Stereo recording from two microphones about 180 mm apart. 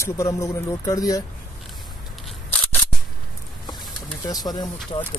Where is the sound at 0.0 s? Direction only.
15° left (ahead or behind).